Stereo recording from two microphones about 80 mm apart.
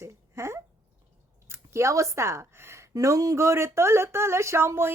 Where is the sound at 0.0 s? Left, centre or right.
Right.